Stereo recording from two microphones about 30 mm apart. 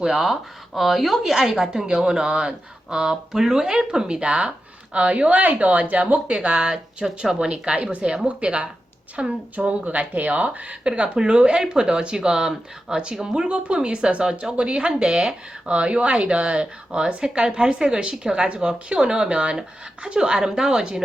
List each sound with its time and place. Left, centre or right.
0.0 s speech: centre
0.8 s speech: centre
2.0 s speech: right
3.8 s speech: right
4.3 s speech: right
5.3 s speech: right
6.2 s speech: right
7.0 s speech: centre
7.4 s speech: right
8.3 s speech: right
9.6 s speech: right
11.2 s speech: right
13.5 s speech: right
18.4 s speech: right